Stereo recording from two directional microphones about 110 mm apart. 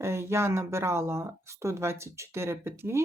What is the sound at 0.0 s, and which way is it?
Speech, 25° right (ahead or behind).